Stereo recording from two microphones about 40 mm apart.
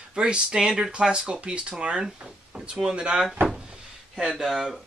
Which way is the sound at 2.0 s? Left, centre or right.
Centre.